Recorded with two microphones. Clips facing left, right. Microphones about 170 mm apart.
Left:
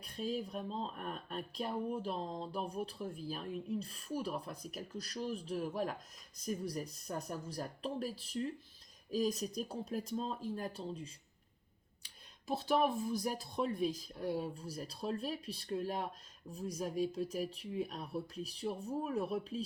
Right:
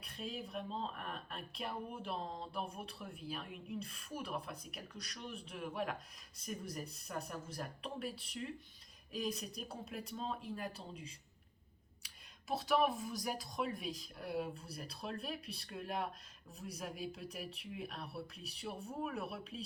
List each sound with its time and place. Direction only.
0.4 s speech: 35° left (ahead or behind)
12.5 s speech: 35° left (ahead or behind)